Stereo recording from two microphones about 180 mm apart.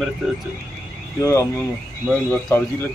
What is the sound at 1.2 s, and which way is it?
A man's voice, 15° left (ahead or behind).